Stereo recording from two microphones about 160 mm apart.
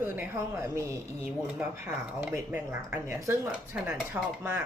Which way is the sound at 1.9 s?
10° right (ahead or behind).